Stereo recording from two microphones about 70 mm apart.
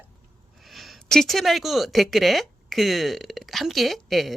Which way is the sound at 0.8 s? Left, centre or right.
Centre.